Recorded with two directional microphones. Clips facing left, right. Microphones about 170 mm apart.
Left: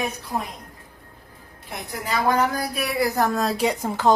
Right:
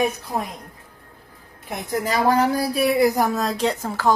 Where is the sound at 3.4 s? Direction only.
5° left (ahead or behind).